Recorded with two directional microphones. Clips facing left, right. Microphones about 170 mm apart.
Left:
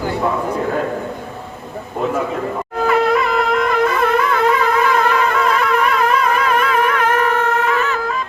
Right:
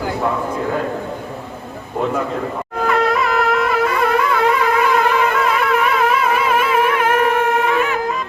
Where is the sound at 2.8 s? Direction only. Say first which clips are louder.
Left 2 dB; centre (ahead or behind).